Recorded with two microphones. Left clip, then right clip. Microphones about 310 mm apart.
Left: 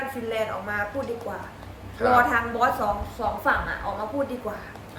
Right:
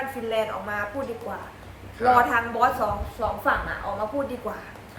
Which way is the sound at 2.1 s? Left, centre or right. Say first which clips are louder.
Left 2 dB; centre.